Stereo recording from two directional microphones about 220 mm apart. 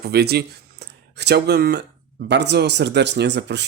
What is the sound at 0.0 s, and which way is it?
Speech, 45° right (ahead or behind).